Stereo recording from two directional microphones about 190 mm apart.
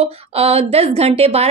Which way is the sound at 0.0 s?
30° right (ahead or behind).